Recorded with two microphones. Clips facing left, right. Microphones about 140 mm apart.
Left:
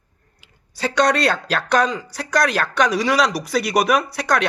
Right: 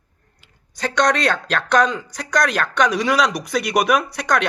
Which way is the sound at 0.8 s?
5° left (ahead or behind).